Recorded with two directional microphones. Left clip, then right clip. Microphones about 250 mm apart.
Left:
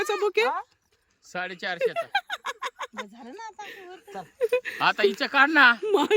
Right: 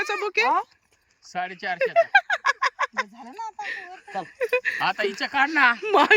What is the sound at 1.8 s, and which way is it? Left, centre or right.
Speech, centre.